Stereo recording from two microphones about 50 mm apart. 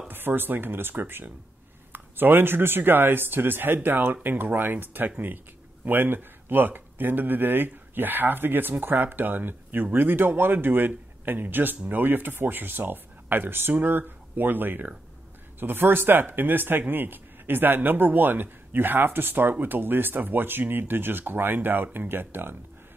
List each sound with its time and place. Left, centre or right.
0.1 s speech: right